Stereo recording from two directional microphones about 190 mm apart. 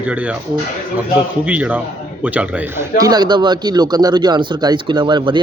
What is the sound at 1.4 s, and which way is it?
Speech, 5° right (ahead or behind).